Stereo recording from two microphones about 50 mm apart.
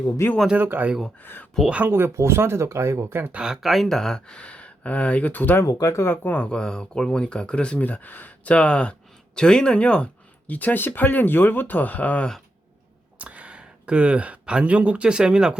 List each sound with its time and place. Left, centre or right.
0.2 s speech: left
0.6 s speech: right
1.2 s speech: left
1.9 s speech: right
3.1 s speech: right
3.6 s speech: centre
4.4 s speech: left
5.3 s speech: left
5.5 s speech: left
6.2 s speech: left
7.8 s speech: left
8.5 s speech: left
10.4 s speech: left
13.1 s speech: right